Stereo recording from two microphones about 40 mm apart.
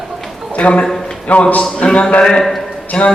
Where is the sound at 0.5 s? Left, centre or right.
Left.